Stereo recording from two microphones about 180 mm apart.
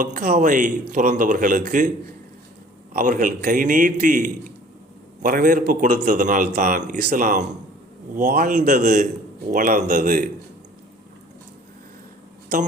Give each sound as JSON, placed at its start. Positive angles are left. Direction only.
{"t": 0.0, "sound": "a man's voice", "side_deg": -45}
{"t": 2.9, "sound": "a man's voice", "side_deg": -45}